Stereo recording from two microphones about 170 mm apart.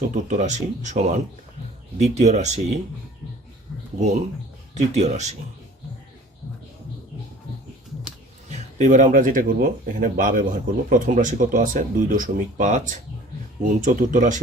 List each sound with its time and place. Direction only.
0.1 s speech: 45° right (ahead or behind)
4.7 s speech: 40° right (ahead or behind)
8.4 s speech: 45° right (ahead or behind)